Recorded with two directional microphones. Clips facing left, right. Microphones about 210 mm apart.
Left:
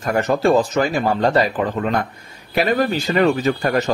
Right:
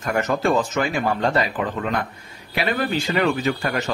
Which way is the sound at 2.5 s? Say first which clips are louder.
Left 5 dB; 40° left (ahead or behind).